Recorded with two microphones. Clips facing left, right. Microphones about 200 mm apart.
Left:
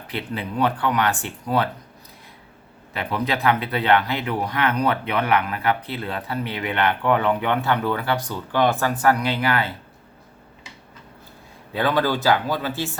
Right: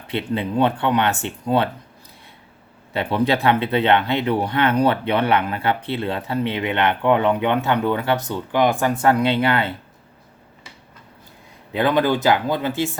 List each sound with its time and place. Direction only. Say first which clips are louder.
0.1 s speech: right 6 dB; 25° right (ahead or behind)
2.9 s speech: right 5 dB; 25° right (ahead or behind)
11.7 s speech: right 3 dB; 20° right (ahead or behind)